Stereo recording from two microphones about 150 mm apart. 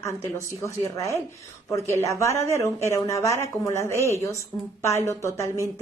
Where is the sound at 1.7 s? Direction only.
20° left (ahead or behind).